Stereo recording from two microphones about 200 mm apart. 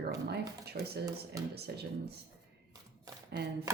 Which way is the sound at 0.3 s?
55° right (ahead or behind).